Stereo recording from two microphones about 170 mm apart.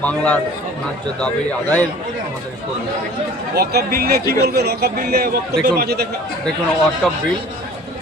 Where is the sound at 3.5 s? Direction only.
65° right (ahead or behind).